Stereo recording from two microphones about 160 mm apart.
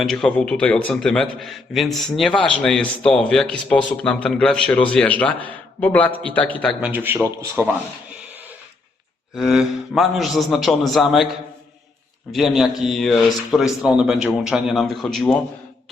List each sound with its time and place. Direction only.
0.0 s a man's voice: 5° left (ahead or behind)
6.8 s speech: 10° right (ahead or behind)
9.3 s a man's voice: 5° right (ahead or behind)
12.3 s a man's voice: centre (ahead or behind)